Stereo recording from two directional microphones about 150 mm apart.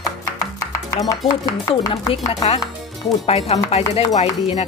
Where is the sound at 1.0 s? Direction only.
25° left (ahead or behind).